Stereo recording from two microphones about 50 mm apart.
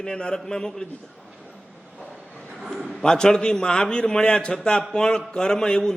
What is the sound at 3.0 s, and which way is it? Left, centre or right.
A man's voice, centre.